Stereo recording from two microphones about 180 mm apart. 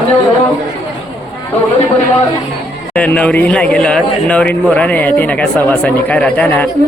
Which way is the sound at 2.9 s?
10° left (ahead or behind).